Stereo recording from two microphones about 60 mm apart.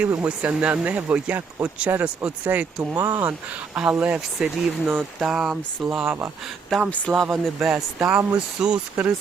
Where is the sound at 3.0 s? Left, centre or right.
Right.